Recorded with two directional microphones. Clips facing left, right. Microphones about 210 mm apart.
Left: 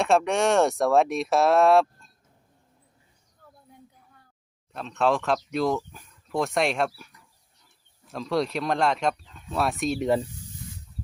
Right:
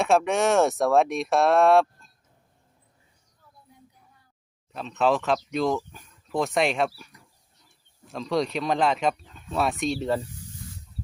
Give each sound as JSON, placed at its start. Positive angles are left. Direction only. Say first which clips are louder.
{"t": 0.0, "sound": "speech", "louder": "even", "side_deg": 0}
{"t": 4.7, "sound": "speech", "louder": "right 1 dB", "side_deg": 0}
{"t": 8.1, "sound": "speech", "louder": "even", "side_deg": 0}
{"t": 10.0, "sound": "speech", "louder": "left 6 dB", "side_deg": 15}